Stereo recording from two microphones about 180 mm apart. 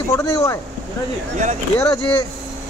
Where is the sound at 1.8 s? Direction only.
20° left (ahead or behind).